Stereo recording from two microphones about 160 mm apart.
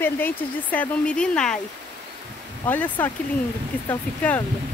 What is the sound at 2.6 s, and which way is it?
Speech, 10° left (ahead or behind).